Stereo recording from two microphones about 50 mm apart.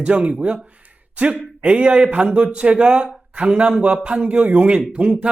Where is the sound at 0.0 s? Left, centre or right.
Centre.